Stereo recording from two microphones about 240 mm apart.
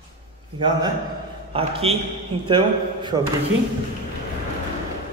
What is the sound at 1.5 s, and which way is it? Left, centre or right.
A man's voice, right.